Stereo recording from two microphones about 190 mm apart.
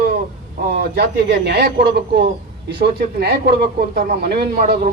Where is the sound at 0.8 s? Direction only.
60° right (ahead or behind).